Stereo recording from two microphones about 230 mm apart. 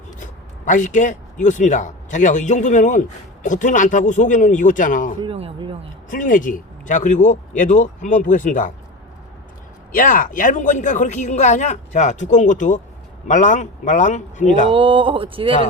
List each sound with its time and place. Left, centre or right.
0.2 s a woman's voice: left
5.2 s speech: right
6.1 s a woman's voice: left
9.9 s a woman's voice: left
14.7 s speech: right